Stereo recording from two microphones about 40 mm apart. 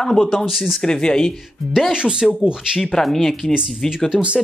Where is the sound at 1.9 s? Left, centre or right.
Right.